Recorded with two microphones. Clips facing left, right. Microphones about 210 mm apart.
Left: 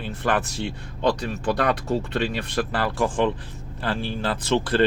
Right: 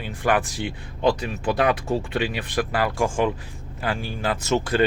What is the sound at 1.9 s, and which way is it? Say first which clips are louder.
Speech: even; 10° right (ahead or behind).